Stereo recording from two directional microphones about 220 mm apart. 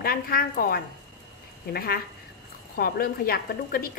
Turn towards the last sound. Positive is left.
turn(degrees=45)  # may be behind; listen again after turning